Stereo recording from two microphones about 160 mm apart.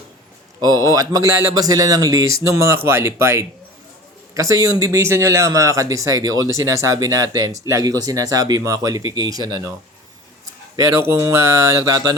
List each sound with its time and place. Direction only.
0.6 s speech: 20° right (ahead or behind)
10.8 s speech: 15° right (ahead or behind)